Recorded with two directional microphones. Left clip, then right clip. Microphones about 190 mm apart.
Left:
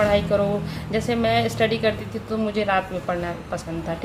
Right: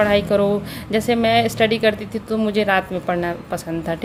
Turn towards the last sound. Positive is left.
turn(degrees=-45)  # may be behind; listen again after turning